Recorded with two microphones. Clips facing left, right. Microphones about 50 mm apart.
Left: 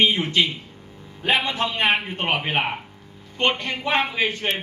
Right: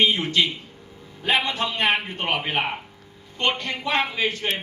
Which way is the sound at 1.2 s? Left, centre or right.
Centre.